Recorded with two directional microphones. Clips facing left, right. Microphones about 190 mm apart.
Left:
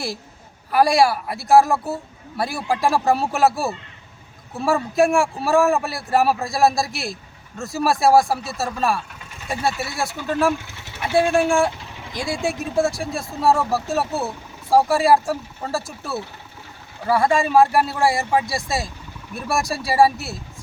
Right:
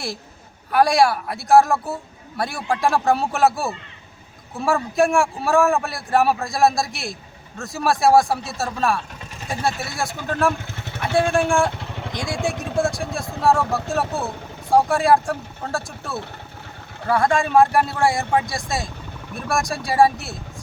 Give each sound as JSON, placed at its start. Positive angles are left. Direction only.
{"t": 0.7, "sound": "a man's voice", "side_deg": 0}
{"t": 10.7, "sound": "vehicle", "side_deg": -55}
{"t": 11.3, "sound": "a man's voice", "side_deg": 5}
{"t": 11.8, "sound": "vehicle", "side_deg": -65}
{"t": 12.1, "sound": "a man's voice", "side_deg": 5}